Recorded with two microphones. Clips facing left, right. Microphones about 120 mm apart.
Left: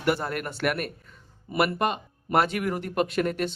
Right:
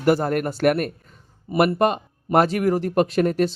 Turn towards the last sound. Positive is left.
turn(degrees=-40)  # may be behind; listen again after turning